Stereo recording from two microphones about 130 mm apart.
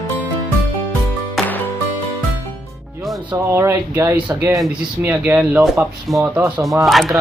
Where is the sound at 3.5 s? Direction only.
20° right (ahead or behind).